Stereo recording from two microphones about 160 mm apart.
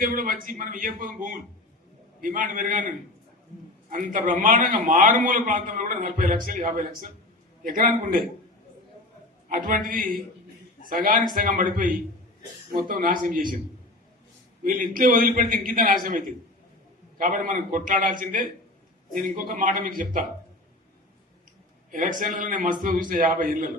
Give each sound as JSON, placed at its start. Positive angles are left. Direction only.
{"t": 0.0, "sound": "a man's voice", "side_deg": -60}
{"t": 9.5, "sound": "a man's voice", "side_deg": -60}
{"t": 14.6, "sound": "a man's voice", "side_deg": -60}
{"t": 21.9, "sound": "a man's voice", "side_deg": -55}